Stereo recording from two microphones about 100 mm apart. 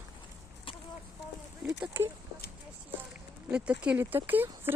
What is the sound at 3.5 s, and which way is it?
Speech, 10° right (ahead or behind).